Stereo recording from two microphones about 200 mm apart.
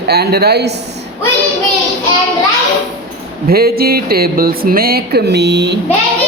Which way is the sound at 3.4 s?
50° right (ahead or behind).